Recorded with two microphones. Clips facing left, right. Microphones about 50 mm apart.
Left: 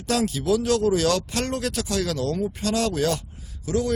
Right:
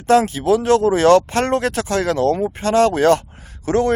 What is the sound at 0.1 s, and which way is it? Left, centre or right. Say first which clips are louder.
A man's voice: right 8 dB; right.